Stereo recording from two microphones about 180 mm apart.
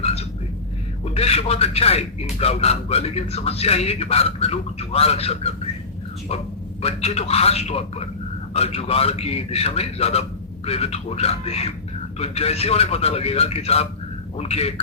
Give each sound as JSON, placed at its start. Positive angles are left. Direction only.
{"t": 0.0, "sound": "a sound", "side_deg": 35}
{"t": 1.1, "sound": "a man's voice", "side_deg": 35}
{"t": 6.8, "sound": "a man's voice", "side_deg": 35}